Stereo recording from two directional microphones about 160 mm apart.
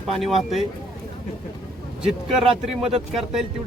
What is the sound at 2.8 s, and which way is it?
Speech, 40° right (ahead or behind).